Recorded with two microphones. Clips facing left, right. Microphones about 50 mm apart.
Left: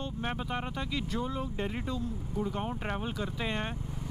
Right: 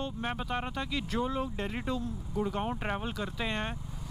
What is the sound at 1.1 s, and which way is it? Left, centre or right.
Speech, centre.